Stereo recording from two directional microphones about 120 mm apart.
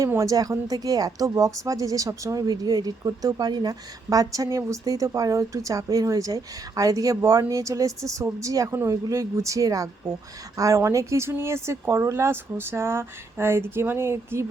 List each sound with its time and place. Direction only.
0.0 s speech: 25° right (ahead or behind)